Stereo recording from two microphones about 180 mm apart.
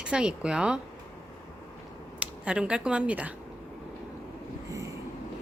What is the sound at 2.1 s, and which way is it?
Speech, 5° right (ahead or behind).